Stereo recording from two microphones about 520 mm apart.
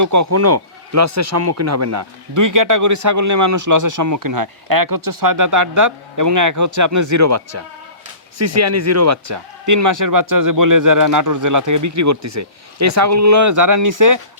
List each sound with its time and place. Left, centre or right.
0.0 s a man's voice: right